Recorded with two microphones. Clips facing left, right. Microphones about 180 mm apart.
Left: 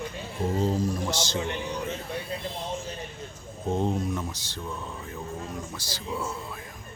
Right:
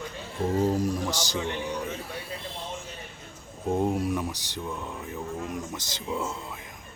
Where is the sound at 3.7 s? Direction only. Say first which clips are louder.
Right 2 dB; 10° right (ahead or behind).